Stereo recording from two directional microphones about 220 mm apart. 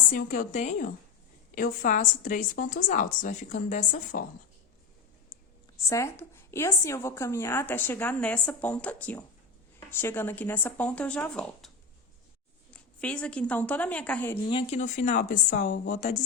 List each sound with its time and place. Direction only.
0.1 s a woman's voice: 40° left (ahead or behind)
5.7 s a woman's voice: 15° left (ahead or behind)
12.7 s a woman's voice: 5° left (ahead or behind)
14.5 s a woman's voice: 30° left (ahead or behind)